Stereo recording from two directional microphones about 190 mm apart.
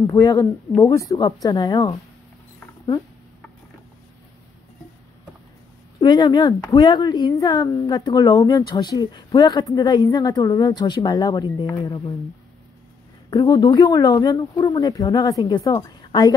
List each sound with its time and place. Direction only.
0.0 s speech: 15° left (ahead or behind)
5.9 s speech: 20° left (ahead or behind)
13.3 s a woman's voice: 20° left (ahead or behind)